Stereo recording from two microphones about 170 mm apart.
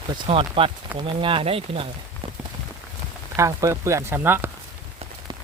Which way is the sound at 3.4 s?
20° right (ahead or behind).